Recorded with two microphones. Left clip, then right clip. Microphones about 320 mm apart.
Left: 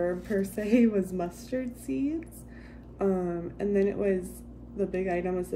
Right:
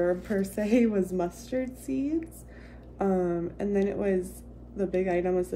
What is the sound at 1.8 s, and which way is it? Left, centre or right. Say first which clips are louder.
A woman's voice: right 1 dB; centre.